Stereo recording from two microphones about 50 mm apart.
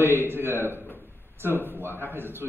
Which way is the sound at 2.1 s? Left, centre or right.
Right.